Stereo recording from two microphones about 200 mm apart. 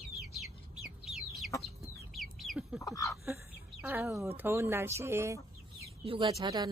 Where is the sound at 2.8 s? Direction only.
15° left (ahead or behind).